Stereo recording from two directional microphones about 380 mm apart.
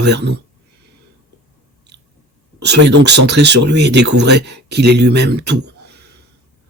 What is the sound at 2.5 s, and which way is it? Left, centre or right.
Speech, right.